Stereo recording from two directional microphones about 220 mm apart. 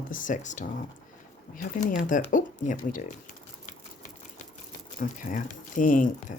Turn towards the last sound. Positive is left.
turn(degrees=35)  # may be behind; listen again after turning